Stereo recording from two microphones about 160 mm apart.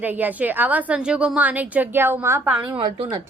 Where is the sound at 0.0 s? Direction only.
10° right (ahead or behind).